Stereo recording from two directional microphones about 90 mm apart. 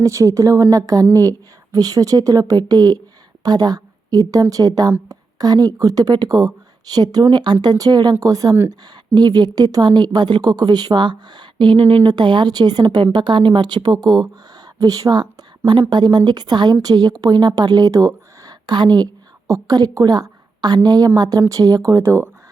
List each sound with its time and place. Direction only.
0.0 s a woman's voice: 35° right (ahead or behind); by 12.0 s 75° right (ahead or behind)
12.0 s a woman's voice: 55° right (ahead or behind)
19.5 s a woman's voice: 40° right (ahead or behind)